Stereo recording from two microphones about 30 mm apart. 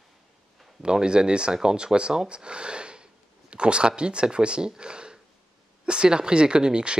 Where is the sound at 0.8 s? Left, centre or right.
Right.